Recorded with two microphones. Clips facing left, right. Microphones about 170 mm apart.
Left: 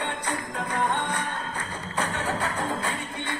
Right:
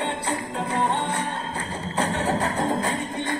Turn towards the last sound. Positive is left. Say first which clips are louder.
# right 5 dB
turn(degrees=-30)  # may be behind; listen again after turning